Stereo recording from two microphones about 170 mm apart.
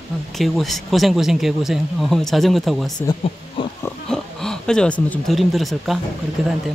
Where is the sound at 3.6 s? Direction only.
30° left (ahead or behind).